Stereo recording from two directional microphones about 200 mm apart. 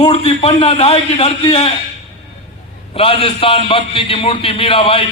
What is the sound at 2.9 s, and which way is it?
A man's voice, 30° left (ahead or behind).